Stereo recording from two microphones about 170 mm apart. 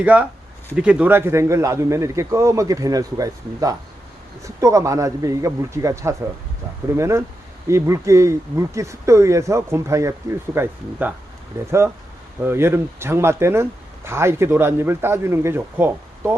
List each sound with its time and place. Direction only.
0.0 s a man's voice: 10° right (ahead or behind)